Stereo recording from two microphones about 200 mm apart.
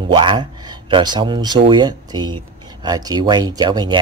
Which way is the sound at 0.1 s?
25° right (ahead or behind).